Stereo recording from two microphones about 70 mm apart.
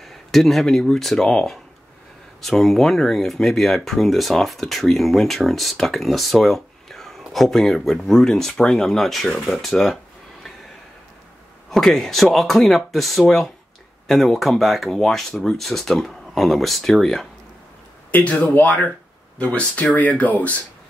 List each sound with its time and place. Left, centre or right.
0.0 s speech: centre
11.7 s speech: centre
18.1 s speech: left